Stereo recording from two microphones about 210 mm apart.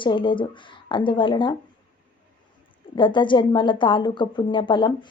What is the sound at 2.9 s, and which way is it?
A woman's voice, 25° left (ahead or behind).